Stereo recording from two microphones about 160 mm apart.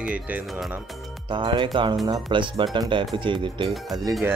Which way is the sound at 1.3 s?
30° right (ahead or behind).